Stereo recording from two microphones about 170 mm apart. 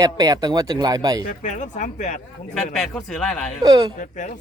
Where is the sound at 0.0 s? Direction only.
20° right (ahead or behind).